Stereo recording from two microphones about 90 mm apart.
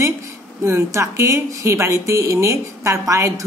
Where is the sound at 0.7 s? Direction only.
30° right (ahead or behind).